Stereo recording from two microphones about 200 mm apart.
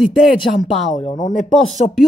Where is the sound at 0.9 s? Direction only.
30° left (ahead or behind).